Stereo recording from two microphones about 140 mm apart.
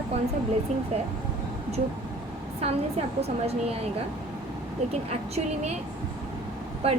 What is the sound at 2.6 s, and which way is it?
A woman's voice, 45° right (ahead or behind).